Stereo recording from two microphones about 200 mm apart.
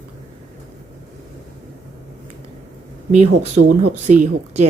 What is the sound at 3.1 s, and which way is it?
Speech, 35° right (ahead or behind).